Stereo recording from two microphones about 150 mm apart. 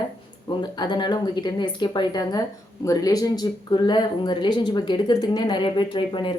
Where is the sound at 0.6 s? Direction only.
30° left (ahead or behind).